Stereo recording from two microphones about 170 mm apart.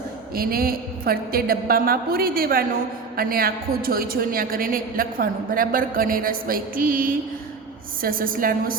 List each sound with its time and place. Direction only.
0.3 s a woman's voice: 60° right (ahead or behind)